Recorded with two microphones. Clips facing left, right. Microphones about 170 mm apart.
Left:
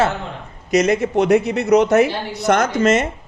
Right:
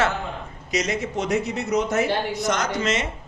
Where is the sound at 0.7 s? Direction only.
55° left (ahead or behind).